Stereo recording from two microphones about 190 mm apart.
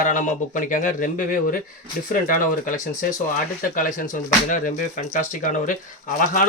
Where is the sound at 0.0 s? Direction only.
40° left (ahead or behind).